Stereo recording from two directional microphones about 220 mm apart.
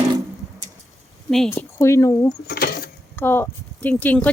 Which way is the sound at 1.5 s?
15° left (ahead or behind).